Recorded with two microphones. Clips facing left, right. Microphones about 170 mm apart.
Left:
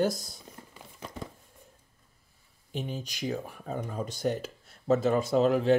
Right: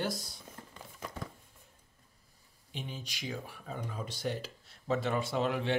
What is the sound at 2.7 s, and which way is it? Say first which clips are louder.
Speech: left 7 dB; 45° left (ahead or behind).